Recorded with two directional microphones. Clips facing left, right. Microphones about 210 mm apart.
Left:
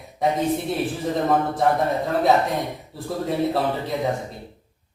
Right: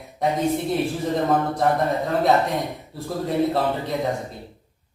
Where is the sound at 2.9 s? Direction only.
Centre (ahead or behind).